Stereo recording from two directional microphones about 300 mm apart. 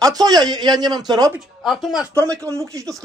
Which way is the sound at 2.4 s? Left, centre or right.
Centre.